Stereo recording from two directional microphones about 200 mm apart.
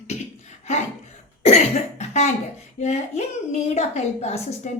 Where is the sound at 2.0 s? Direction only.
35° left (ahead or behind).